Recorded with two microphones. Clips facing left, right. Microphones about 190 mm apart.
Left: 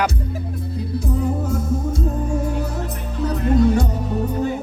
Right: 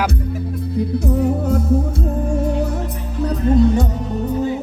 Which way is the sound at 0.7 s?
65° right (ahead or behind).